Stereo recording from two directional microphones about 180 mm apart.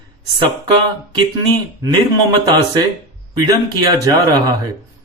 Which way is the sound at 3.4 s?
25° right (ahead or behind).